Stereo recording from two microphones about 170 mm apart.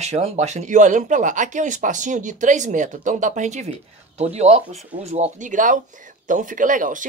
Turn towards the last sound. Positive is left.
turn(degrees=-50)  # may be behind; listen again after turning